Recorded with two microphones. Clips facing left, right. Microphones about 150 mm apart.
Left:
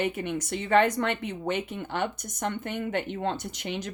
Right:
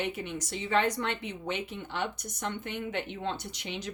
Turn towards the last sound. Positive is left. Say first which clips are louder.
# left 4 dB
turn(degrees=50)  # may be behind; listen again after turning